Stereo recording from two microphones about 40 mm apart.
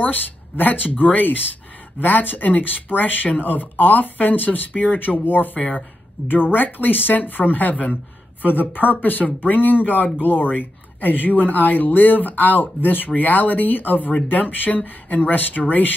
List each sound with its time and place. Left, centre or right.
0.0 s speech: left
8.5 s speech: left